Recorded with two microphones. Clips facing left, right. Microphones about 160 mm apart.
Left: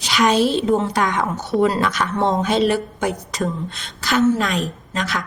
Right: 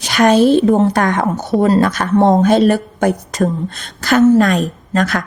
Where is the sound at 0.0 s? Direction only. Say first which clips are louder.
Right 6 dB; 50° right (ahead or behind).